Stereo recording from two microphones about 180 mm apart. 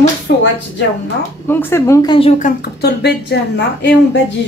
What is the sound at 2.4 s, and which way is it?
Speech, 60° left (ahead or behind).